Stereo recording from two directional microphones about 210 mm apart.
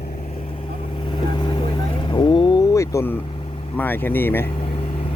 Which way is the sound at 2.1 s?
20° left (ahead or behind).